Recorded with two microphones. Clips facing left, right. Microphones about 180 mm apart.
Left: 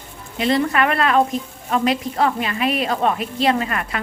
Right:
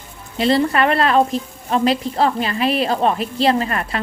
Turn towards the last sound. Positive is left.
turn(degrees=-35)  # may be behind; listen again after turning